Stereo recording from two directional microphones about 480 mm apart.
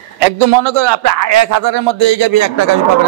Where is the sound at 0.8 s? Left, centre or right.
Right.